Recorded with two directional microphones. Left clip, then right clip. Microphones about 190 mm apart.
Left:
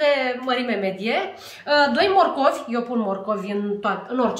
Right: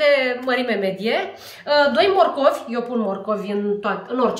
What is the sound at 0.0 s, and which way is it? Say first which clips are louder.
A woman's voice: right 3 dB; 35° right (ahead or behind).